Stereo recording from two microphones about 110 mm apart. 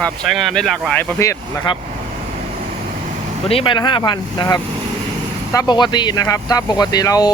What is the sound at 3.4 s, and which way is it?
Speech, 55° left (ahead or behind).